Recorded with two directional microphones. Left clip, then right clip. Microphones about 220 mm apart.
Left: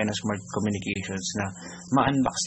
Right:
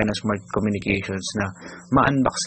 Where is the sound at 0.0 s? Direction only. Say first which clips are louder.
Right 5 dB; 20° right (ahead or behind).